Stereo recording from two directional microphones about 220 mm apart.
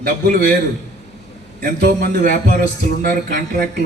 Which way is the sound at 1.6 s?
45° right (ahead or behind).